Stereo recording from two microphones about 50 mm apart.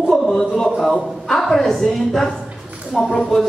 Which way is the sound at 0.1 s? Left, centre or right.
Centre.